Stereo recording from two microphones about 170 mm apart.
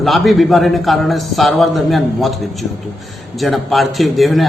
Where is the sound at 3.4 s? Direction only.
Centre (ahead or behind).